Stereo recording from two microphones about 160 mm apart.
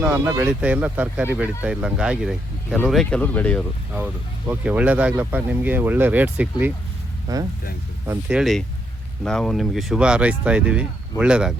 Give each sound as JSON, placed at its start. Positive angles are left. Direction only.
{"t": 0.0, "sound": "speech", "side_deg": -10}
{"t": 3.9, "sound": "speech", "side_deg": -10}
{"t": 8.0, "sound": "speech", "side_deg": -15}
{"t": 8.4, "sound": "speech", "side_deg": 0}